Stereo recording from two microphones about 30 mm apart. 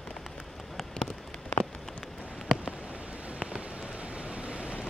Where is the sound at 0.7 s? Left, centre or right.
Centre.